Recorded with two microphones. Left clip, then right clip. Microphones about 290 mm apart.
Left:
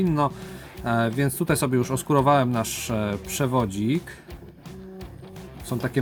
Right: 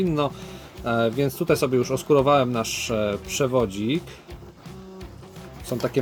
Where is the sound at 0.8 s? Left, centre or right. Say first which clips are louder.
Right 2 dB; left.